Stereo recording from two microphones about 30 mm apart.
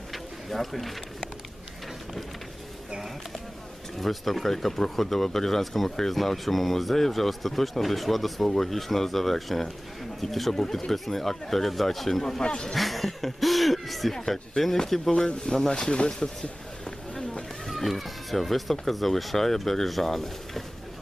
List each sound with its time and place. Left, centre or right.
0.1 s a sound: centre
3.9 s speech: centre
12.4 s speech: left
12.6 s speech: centre
14.1 s speech: centre
15.3 s speech: centre
15.7 s speech: left
17.7 s speech: centre